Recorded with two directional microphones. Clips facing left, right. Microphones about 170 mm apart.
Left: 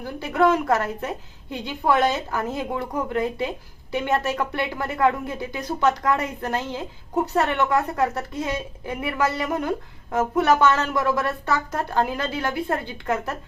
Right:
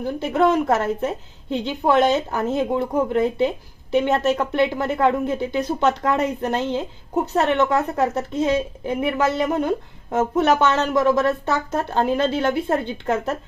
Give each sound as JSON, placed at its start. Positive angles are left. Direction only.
{"t": 0.0, "sound": "a woman's voice", "side_deg": -20}